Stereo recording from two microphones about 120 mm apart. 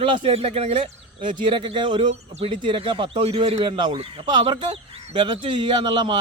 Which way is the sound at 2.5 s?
45° right (ahead or behind).